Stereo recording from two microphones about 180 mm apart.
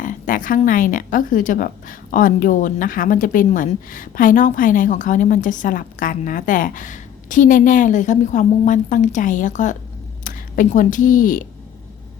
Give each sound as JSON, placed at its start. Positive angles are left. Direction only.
{"t": 0.0, "sound": "a woman's voice", "side_deg": 50}